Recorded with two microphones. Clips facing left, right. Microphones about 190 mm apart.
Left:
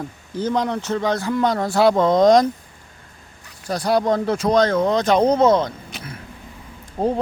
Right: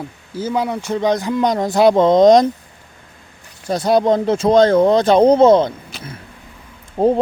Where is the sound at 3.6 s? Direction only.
25° right (ahead or behind).